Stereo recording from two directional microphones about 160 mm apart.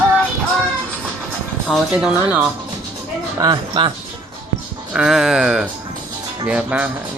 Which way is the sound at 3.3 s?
25° right (ahead or behind).